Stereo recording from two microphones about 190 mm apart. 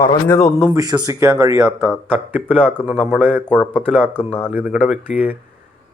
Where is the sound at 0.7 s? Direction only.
20° right (ahead or behind).